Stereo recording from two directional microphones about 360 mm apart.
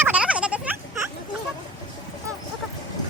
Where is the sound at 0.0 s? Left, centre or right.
Centre.